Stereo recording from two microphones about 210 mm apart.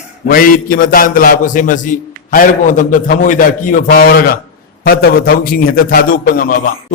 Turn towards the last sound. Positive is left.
turn(degrees=40)  # may be behind; listen again after turning